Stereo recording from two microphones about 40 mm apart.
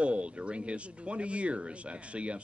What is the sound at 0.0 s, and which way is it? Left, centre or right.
Speech, right.